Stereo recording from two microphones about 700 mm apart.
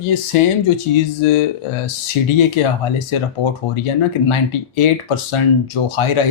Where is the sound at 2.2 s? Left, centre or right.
Left.